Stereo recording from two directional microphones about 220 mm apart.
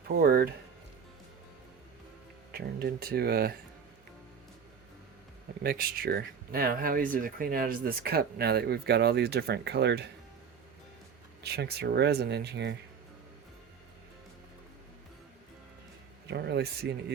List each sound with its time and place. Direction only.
0.2 s speech: 45° right (ahead or behind)
2.5 s speech: 45° right (ahead or behind)
5.6 s speech: 40° right (ahead or behind)
11.4 s speech: 45° right (ahead or behind)
16.3 s speech: 50° right (ahead or behind)